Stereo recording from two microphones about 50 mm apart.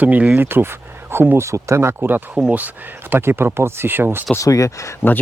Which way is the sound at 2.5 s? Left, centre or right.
Right.